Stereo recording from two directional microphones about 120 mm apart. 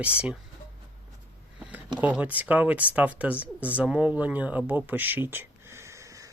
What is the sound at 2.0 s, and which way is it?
Speech, 10° right (ahead or behind).